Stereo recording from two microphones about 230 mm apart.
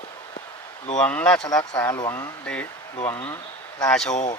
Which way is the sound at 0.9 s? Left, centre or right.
Centre.